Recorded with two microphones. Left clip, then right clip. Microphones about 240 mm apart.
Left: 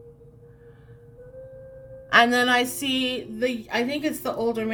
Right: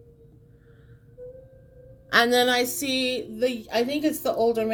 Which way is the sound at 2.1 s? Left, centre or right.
Centre.